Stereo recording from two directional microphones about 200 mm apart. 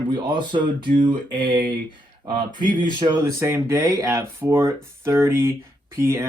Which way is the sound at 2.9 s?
25° right (ahead or behind).